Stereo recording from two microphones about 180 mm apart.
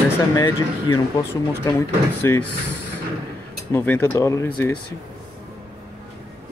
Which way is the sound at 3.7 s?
10° left (ahead or behind).